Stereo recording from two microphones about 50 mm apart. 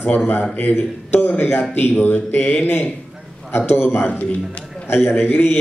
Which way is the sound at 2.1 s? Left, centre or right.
Left.